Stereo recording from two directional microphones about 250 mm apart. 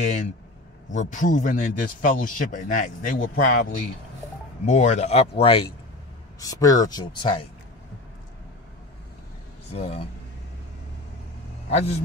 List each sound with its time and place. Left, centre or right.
0.0 s a man's voice: left
4.6 s speech: left
9.7 s speech: left
11.7 s speech: left